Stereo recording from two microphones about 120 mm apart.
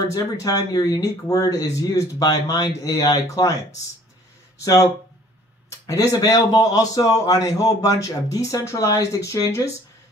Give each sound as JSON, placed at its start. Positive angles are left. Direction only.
{"t": 0.1, "sound": "a man's voice", "side_deg": 30}
{"t": 5.9, "sound": "a man's voice", "side_deg": 30}